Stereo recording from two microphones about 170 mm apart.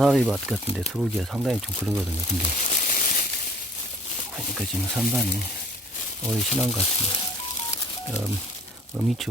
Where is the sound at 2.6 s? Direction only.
45° left (ahead or behind).